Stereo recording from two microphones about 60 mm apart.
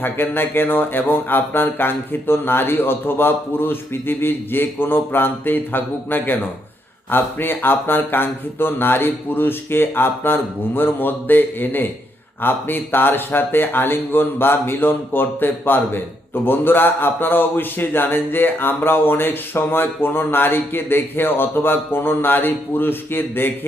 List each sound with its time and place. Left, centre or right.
0.0 s speech: left